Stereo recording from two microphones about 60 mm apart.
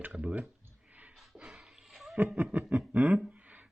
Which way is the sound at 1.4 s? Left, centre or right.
Centre.